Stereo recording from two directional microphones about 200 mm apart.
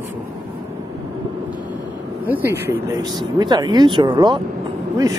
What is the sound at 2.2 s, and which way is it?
Speech, 10° right (ahead or behind).